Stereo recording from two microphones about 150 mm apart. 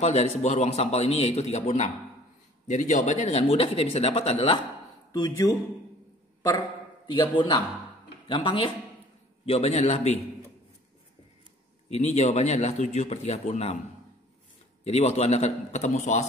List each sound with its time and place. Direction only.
0.0 s a man's voice: 45° left (ahead or behind)
5.1 s speech: 25° left (ahead or behind)
7.2 s a man's voice: 30° left (ahead or behind); by 10.2 s 45° left (ahead or behind)
11.9 s a man's voice: 45° left (ahead or behind)
14.9 s a man's voice: 45° left (ahead or behind)